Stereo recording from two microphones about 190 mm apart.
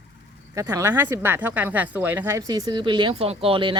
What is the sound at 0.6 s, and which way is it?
Speech, 15° right (ahead or behind).